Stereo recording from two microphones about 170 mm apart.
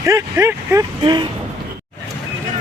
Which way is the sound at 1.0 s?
25° right (ahead or behind).